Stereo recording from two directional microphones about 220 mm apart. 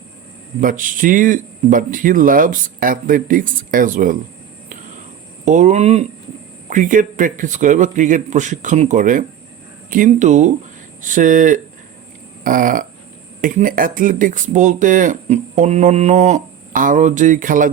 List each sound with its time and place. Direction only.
0.6 s speech: 35° right (ahead or behind)
5.5 s speech: 30° right (ahead or behind)